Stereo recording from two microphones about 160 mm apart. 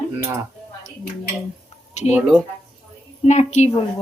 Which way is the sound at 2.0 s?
45° left (ahead or behind).